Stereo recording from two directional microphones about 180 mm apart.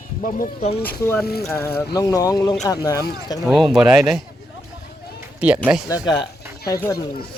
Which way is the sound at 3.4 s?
Centre (ahead or behind).